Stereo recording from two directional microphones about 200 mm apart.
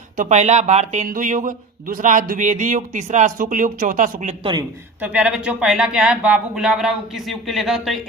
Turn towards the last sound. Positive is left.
turn(degrees=0)  # may be behind; listen again after turning